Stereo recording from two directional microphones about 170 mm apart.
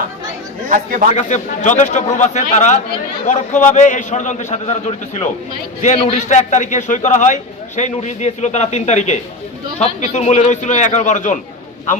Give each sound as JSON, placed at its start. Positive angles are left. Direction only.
{"t": 0.7, "sound": "a man's voice", "side_deg": -55}
{"t": 1.1, "sound": "a man's voice", "side_deg": 45}